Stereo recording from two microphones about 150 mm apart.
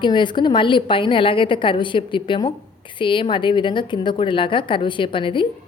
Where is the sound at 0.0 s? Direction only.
30° left (ahead or behind).